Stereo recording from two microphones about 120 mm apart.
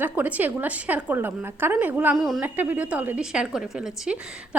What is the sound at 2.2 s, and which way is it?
Speech, centre (ahead or behind).